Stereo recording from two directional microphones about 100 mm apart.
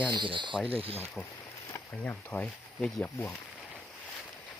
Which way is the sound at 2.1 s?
15° left (ahead or behind).